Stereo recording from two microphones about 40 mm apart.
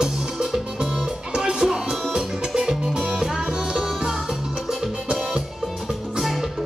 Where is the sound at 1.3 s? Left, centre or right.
Right.